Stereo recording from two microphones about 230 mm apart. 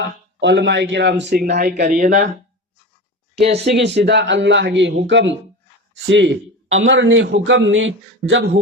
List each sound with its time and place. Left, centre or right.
0.3 s a man's voice: right
3.6 s a man's voice: right